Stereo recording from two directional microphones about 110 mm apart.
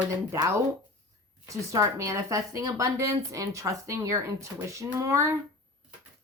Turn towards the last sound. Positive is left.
turn(degrees=-30)  # may be behind; listen again after turning